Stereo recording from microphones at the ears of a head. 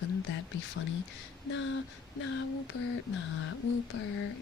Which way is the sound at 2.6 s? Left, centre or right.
Left.